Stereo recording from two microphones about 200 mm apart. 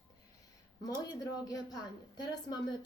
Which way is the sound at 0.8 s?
20° left (ahead or behind).